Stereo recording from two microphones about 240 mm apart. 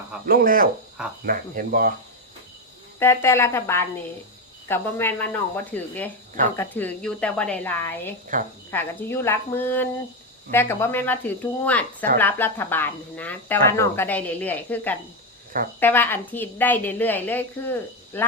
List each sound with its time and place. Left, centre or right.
0.3 s speech: right
3.0 s speech: centre
8.3 s speech: right
8.7 s speech: centre